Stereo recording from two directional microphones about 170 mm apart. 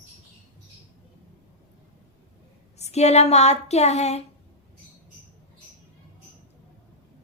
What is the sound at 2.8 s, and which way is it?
A woman's voice, 40° left (ahead or behind).